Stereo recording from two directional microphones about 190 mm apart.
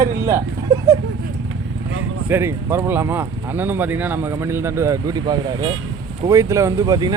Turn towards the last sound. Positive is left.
turn(degrees=-20)  # may be behind; listen again after turning